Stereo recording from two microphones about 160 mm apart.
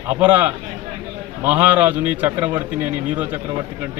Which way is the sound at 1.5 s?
10° right (ahead or behind).